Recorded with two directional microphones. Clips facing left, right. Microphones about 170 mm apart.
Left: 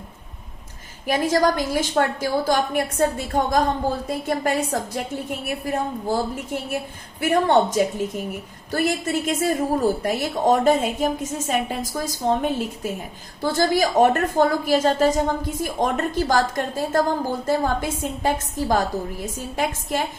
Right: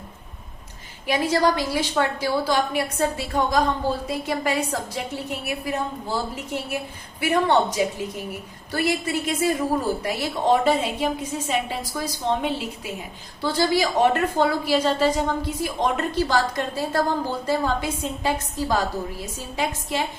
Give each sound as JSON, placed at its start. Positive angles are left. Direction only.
{"t": 1.0, "sound": "a woman's voice", "side_deg": 45}